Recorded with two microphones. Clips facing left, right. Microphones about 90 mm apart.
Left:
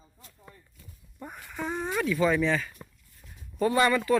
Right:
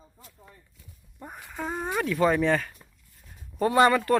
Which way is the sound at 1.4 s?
15° right (ahead or behind).